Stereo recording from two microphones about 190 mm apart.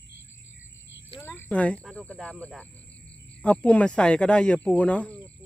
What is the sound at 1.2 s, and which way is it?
Speech, 10° left (ahead or behind).